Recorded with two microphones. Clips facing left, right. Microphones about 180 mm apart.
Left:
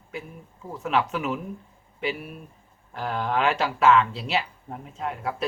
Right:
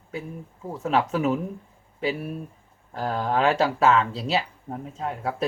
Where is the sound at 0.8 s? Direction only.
40° right (ahead or behind).